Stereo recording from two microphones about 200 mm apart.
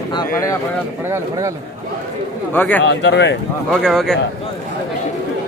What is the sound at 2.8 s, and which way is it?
Speech, 65° left (ahead or behind).